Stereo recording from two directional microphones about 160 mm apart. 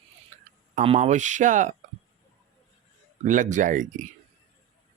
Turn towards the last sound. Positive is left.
turn(degrees=-55)  # may be behind; listen again after turning